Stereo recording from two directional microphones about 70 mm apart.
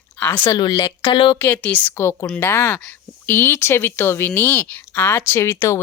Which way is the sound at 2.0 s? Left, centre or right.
Left.